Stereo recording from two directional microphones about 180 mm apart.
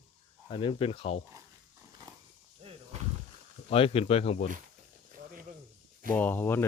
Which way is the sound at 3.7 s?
30° left (ahead or behind).